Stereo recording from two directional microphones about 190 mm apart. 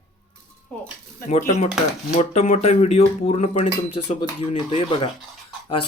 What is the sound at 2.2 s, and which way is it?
Speech, 35° left (ahead or behind).